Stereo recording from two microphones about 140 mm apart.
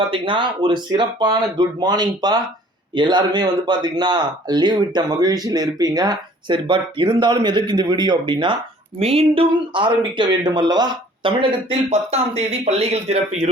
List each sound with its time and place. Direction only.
0.0 s speech: 40° right (ahead or behind)
11.9 s speech: 50° right (ahead or behind)